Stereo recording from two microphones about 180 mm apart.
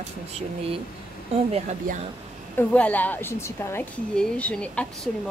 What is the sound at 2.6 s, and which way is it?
Speech, 10° left (ahead or behind).